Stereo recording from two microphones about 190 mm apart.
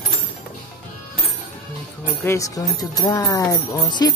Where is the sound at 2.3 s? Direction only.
15° left (ahead or behind).